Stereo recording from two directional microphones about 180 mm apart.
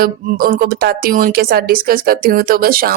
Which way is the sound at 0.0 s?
55° right (ahead or behind).